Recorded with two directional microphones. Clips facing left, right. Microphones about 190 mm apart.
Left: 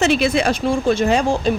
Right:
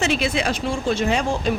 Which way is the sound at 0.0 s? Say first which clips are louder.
Left 5 dB; 45° left (ahead or behind).